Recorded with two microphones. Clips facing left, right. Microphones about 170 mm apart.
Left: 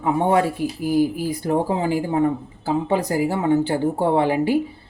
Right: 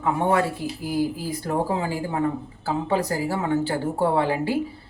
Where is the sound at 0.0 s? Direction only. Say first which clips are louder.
Left 3 dB; 15° left (ahead or behind).